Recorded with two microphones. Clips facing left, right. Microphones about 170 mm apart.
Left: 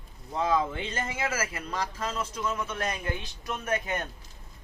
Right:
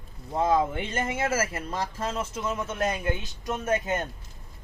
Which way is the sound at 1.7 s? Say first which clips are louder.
Right 2 dB; 25° right (ahead or behind).